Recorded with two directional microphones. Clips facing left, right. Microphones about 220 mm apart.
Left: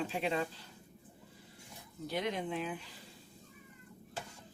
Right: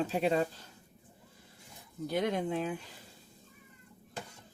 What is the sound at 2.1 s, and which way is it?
Speech, 45° right (ahead or behind).